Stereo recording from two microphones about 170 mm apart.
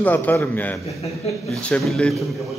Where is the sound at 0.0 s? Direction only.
10° left (ahead or behind).